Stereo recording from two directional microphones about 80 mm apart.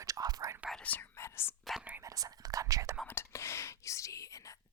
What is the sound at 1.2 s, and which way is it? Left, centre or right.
Whispering, left.